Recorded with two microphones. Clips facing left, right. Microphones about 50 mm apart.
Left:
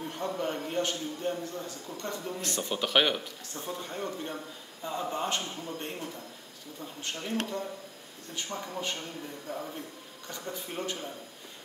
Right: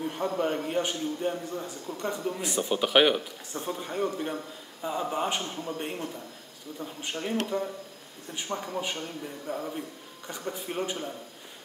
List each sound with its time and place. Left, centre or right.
0.0 s a man's voice: centre